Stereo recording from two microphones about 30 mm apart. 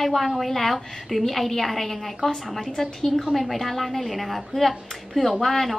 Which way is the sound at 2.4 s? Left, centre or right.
Centre.